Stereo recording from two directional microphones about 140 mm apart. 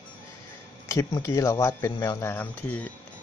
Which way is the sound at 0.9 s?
20° left (ahead or behind).